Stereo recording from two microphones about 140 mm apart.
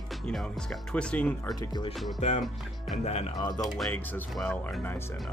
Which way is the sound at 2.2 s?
55° left (ahead or behind).